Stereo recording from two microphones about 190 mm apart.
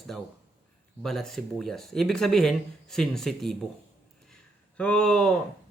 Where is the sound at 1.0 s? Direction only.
Centre (ahead or behind).